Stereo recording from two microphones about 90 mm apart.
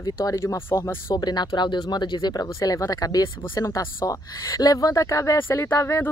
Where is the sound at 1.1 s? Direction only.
50° left (ahead or behind).